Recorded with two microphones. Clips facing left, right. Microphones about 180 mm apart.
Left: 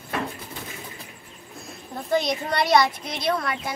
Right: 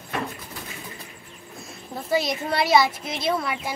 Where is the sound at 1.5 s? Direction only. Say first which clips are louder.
Even; centre (ahead or behind).